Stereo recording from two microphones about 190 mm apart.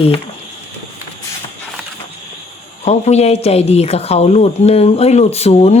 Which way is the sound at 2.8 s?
35° left (ahead or behind).